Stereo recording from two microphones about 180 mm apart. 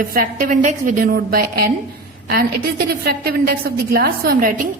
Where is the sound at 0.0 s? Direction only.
50° right (ahead or behind).